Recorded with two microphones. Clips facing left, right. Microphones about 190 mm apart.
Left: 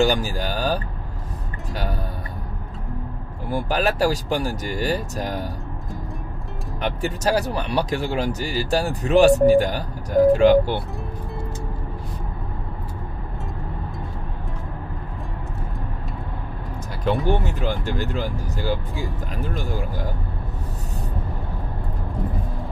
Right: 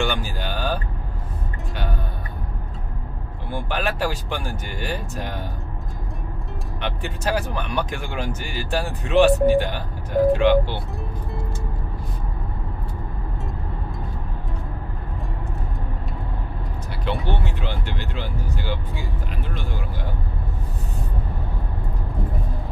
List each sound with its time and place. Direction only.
0.0 s speech: 40° left (ahead or behind)
3.4 s speech: 40° left (ahead or behind)
6.8 s speech: 40° left (ahead or behind)
17.3 s speech: 45° left (ahead or behind)